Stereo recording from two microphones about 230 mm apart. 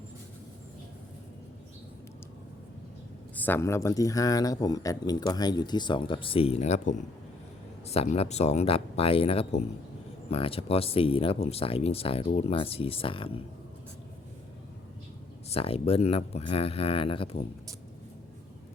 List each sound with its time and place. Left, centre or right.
3.3 s speech: centre
15.4 s speech: left